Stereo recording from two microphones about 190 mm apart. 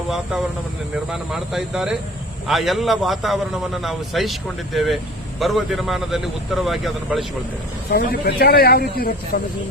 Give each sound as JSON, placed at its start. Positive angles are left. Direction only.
{"t": 1.1, "sound": "a man's voice", "side_deg": -5}
{"t": 7.9, "sound": "speech", "side_deg": 55}